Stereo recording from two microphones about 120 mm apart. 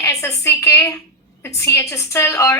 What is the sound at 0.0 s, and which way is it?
A woman's voice, 25° left (ahead or behind).